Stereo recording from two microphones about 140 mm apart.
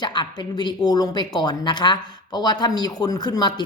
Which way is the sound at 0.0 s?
30° left (ahead or behind).